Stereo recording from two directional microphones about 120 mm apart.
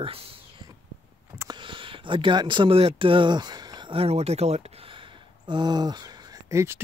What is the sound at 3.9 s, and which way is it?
Speech, 55° right (ahead or behind).